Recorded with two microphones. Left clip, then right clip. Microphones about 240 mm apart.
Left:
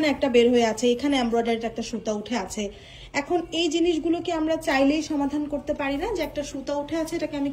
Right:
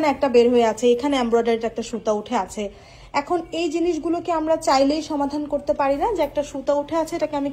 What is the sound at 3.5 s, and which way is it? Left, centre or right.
A woman's voice, centre.